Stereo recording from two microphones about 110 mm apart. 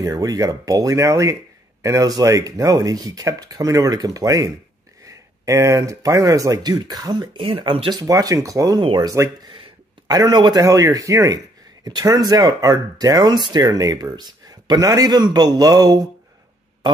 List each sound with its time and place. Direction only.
0.1 s speech: 35° right (ahead or behind)
7.4 s speech: 55° right (ahead or behind)
7.9 s speech: 35° right (ahead or behind)
9.1 s speech: 30° right (ahead or behind)